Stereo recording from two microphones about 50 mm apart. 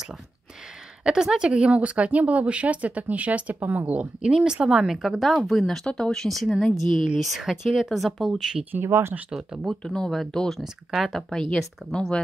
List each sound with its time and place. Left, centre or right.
1.0 s a woman's voice: centre
4.8 s speech: centre
5.9 s speech: centre
6.2 s speech: centre
7.2 s speech: centre
8.8 s speech: right
9.3 s speech: centre
9.7 s speech: centre
10.6 s speech: centre
11.1 s speech: centre